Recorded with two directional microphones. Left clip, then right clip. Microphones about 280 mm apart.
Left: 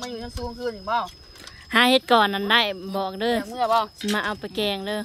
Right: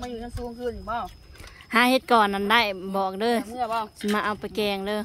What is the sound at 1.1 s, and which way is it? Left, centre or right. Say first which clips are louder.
Speech: left 4 dB; centre.